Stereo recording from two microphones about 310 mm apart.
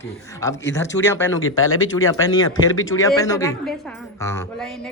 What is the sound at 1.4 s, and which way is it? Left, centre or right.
Speech, left.